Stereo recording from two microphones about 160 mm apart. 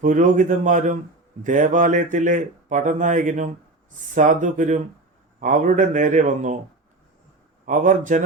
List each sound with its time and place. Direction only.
0.0 s speech: 50° right (ahead or behind)
7.6 s speech: 55° right (ahead or behind)